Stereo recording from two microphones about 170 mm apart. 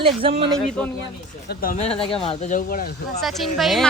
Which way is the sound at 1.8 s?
35° left (ahead or behind).